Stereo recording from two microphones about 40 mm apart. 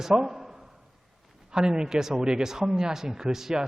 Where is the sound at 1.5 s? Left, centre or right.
Centre.